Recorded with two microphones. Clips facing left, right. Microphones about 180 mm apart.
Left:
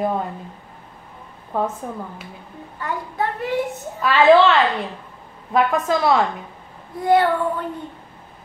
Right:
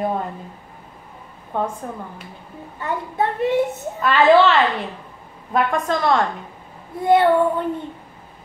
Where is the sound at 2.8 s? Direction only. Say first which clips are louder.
Right 2 dB; 25° right (ahead or behind).